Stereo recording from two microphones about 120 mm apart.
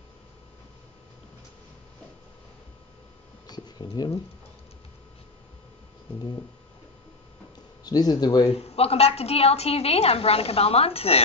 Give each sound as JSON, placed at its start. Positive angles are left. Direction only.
{"t": 3.4, "sound": "a sound", "side_deg": 35}
{"t": 7.8, "sound": "speech", "side_deg": 35}
{"t": 8.5, "sound": "a woman's voice", "side_deg": 60}